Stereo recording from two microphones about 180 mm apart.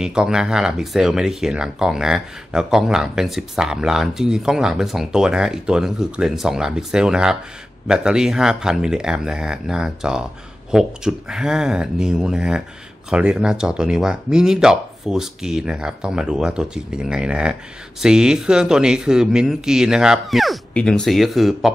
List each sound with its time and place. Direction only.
0.0 s speech: 5° right (ahead or behind)